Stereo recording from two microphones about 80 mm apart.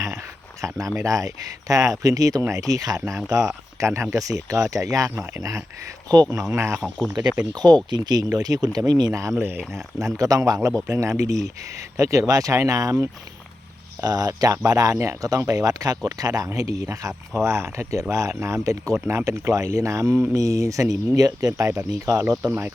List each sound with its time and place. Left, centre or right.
0.6 s speech: right
6.3 s speech: right
7.5 s speech: right
9.1 s speech: right
9.4 s speech: right
10.2 s speech: right
14.0 s speech: right
21.7 s speech: right